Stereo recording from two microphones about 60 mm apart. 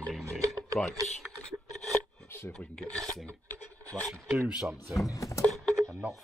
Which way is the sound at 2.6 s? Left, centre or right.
Centre.